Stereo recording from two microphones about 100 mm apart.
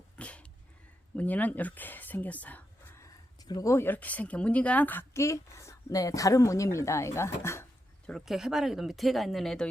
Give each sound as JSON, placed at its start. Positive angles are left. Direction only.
{"t": 0.2, "sound": "a sound", "side_deg": 10}
{"t": 1.1, "sound": "speech", "side_deg": 15}
{"t": 3.4, "sound": "speech", "side_deg": 40}
{"t": 8.0, "sound": "speech", "side_deg": 0}